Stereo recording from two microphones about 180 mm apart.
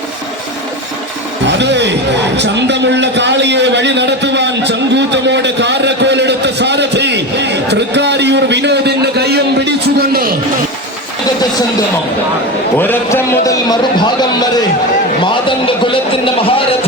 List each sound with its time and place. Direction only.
1.5 s music: 75° right (ahead or behind); by 10.3 s 55° right (ahead or behind)
12.7 s a man's voice: 10° left (ahead or behind); by 16.6 s 30° left (ahead or behind)